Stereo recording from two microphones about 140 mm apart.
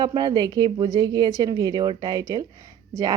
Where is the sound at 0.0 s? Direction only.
30° right (ahead or behind).